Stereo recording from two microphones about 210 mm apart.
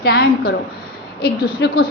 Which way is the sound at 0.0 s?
50° left (ahead or behind).